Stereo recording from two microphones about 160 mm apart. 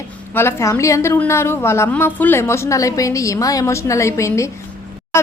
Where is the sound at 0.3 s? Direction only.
15° left (ahead or behind).